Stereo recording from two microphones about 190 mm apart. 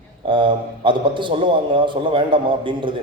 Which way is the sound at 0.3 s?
25° right (ahead or behind).